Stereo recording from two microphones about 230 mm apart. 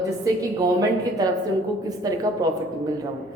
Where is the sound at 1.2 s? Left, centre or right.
Centre.